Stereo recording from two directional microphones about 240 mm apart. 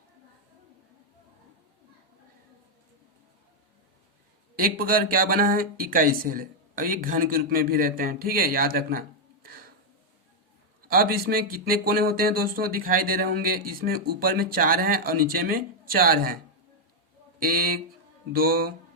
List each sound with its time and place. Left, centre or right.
4.5 s speech: right
10.8 s speech: right
17.4 s speech: right